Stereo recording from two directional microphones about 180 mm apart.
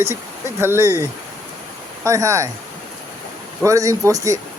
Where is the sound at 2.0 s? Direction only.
15° right (ahead or behind).